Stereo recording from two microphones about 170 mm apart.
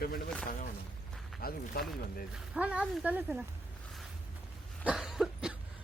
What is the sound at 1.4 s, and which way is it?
Speech, 65° left (ahead or behind).